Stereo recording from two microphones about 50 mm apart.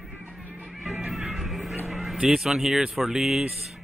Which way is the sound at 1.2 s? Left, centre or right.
Centre.